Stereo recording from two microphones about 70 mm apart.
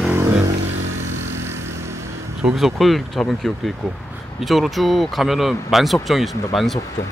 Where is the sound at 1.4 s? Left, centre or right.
Right.